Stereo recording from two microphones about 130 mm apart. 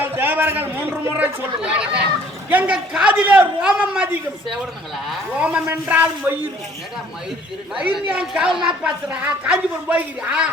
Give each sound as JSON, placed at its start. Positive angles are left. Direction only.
{"t": 0.0, "sound": "a sound", "side_deg": -15}
{"t": 2.5, "sound": "a man's voice", "side_deg": -10}
{"t": 7.8, "sound": "a man's voice", "side_deg": -5}